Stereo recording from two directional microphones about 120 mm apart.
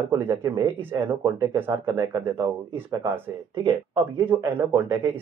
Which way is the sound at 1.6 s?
20° right (ahead or behind).